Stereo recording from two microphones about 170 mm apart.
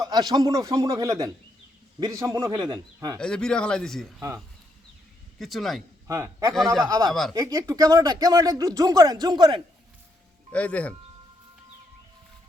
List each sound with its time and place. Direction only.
0.0 s speech: 25° right (ahead or behind)
3.2 s speech: 5° left (ahead or behind)
5.4 s speech: centre (ahead or behind)
6.1 s a man's voice: 20° right (ahead or behind)
7.1 s speech: centre (ahead or behind)
7.3 s speech: 20° right (ahead or behind)
10.5 s speech: 10° left (ahead or behind)